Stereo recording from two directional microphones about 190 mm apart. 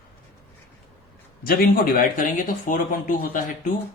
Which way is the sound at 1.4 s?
50° left (ahead or behind).